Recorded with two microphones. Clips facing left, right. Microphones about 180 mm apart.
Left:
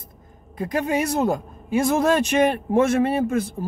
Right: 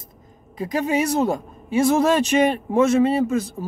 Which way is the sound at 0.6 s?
55° left (ahead or behind).